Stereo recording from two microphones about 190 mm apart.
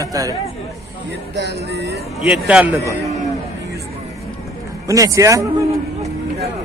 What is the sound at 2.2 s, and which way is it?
Speech, 5° right (ahead or behind).